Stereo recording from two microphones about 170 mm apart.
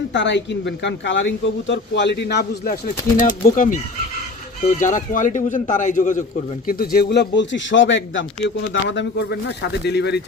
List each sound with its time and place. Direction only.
0.1 s a man's voice: 90° left